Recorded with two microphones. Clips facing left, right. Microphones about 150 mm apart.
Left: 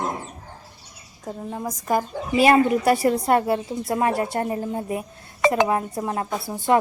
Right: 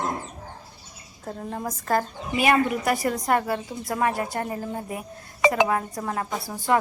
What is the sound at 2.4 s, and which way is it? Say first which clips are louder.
A woman's voice: left 5 dB; 30° left (ahead or behind).